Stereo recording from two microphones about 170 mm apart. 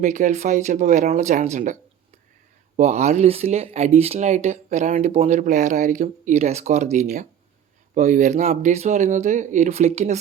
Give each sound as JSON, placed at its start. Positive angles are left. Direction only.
{"t": 0.0, "sound": "speech", "side_deg": -45}